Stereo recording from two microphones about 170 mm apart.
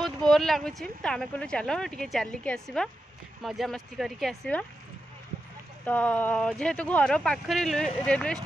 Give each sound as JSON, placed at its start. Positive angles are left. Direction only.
{"t": 0.3, "sound": "speech", "side_deg": 0}
{"t": 5.9, "sound": "speech", "side_deg": 10}